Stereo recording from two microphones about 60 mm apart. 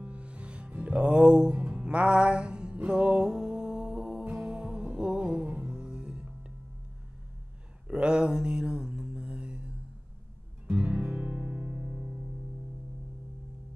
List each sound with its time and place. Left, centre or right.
0.0 s music: right
7.9 s mantra: centre
10.7 s music: right